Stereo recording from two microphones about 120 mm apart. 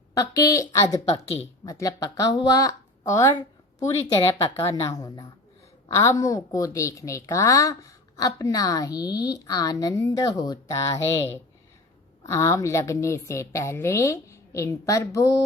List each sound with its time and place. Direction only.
0.1 s a woman's voice: 30° left (ahead or behind)
4.5 s a woman's voice: 25° left (ahead or behind)